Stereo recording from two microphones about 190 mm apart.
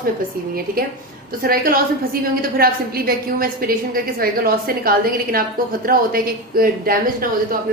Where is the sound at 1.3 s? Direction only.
50° right (ahead or behind).